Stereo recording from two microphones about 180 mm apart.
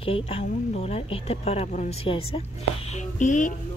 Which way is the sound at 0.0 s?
35° left (ahead or behind).